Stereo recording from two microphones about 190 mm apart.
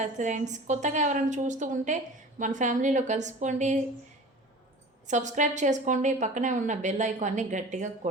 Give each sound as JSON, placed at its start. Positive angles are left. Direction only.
{"t": 0.0, "sound": "a woman's voice", "side_deg": -40}
{"t": 5.0, "sound": "a woman's voice", "side_deg": -40}